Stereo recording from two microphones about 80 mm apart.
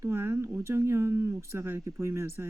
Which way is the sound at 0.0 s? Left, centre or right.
Right.